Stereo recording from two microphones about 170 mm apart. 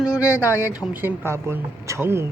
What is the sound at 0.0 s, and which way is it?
Speech, 5° right (ahead or behind).